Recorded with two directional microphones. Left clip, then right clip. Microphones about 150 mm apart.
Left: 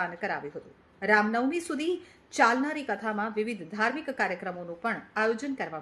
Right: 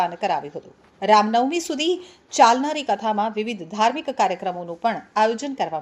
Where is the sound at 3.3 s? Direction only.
20° left (ahead or behind).